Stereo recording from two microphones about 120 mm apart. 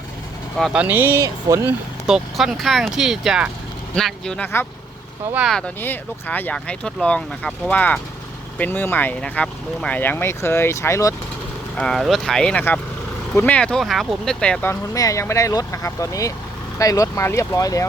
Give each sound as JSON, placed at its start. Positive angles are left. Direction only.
{"t": 0.5, "sound": "speech", "side_deg": 5}
{"t": 0.8, "sound": "speech", "side_deg": -15}
{"t": 2.0, "sound": "speech", "side_deg": -5}
{"t": 5.5, "sound": "speech", "side_deg": 5}
{"t": 11.8, "sound": "speech", "side_deg": 5}
{"t": 14.6, "sound": "speech", "side_deg": 25}